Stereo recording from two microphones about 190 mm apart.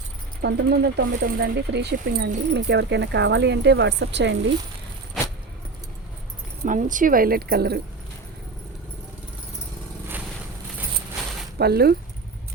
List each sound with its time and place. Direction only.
0.4 s speech: 60° right (ahead or behind)
6.7 s a woman's voice: 45° right (ahead or behind)
11.5 s speech: 55° right (ahead or behind)